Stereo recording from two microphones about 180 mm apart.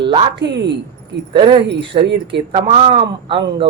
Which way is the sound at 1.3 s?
30° right (ahead or behind).